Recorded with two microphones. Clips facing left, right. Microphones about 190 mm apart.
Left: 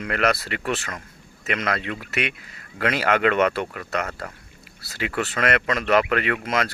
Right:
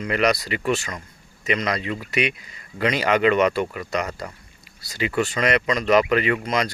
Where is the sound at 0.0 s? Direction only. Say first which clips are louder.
Right 2 dB; centre (ahead or behind).